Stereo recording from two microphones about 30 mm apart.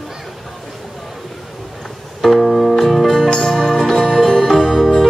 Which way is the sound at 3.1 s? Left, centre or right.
Centre.